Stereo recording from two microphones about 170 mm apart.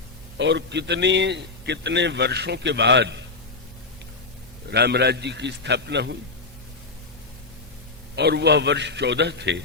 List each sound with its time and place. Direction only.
0.3 s a man's voice: 90° right
4.7 s a man's voice: 75° right (ahead or behind)
8.1 s a man's voice: 80° right